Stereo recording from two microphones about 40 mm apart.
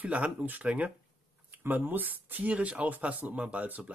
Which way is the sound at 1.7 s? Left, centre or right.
Right.